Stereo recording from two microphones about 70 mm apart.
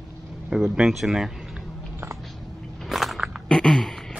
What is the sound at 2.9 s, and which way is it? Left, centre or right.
Biting, centre.